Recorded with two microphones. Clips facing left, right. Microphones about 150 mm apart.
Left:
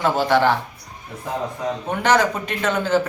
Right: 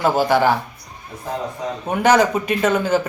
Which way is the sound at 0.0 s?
10° right (ahead or behind).